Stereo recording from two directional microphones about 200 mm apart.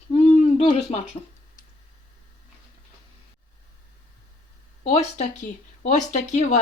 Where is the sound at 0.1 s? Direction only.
30° left (ahead or behind).